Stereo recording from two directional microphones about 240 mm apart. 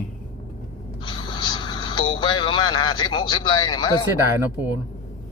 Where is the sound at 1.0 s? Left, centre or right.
Centre.